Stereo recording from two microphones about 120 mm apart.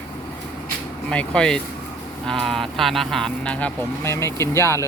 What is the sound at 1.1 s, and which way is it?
Speech, 10° left (ahead or behind).